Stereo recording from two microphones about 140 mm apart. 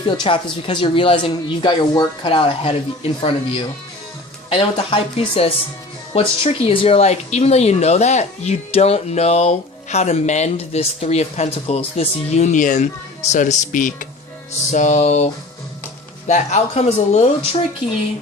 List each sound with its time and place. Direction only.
0.0 s speech: 35° left (ahead or behind); by 14.1 s 70° left (ahead or behind)
14.7 s music: 60° left (ahead or behind)
16.2 s speech: 55° left (ahead or behind)